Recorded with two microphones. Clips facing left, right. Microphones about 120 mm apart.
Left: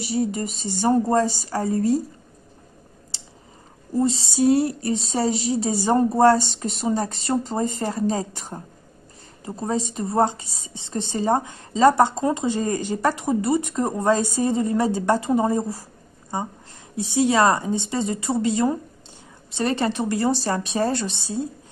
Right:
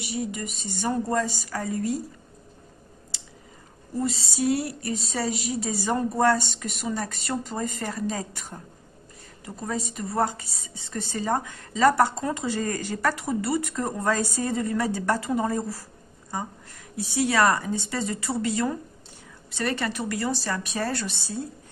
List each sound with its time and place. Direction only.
0.0 s speech: 35° left (ahead or behind)
3.1 s a sound: 30° left (ahead or behind)
4.0 s a woman's voice: 25° left (ahead or behind)